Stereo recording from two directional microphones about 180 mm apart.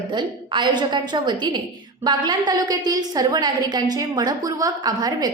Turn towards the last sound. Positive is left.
turn(degrees=-20)  # may be behind; listen again after turning